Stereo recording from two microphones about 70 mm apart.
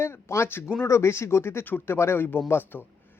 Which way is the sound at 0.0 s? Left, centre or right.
Left.